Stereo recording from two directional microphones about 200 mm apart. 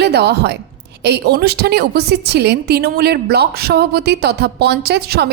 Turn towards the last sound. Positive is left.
turn(degrees=-55)  # may be behind; listen again after turning